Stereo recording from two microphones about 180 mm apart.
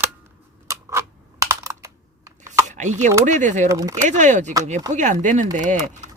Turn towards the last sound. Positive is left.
turn(degrees=-45)  # may be behind; listen again after turning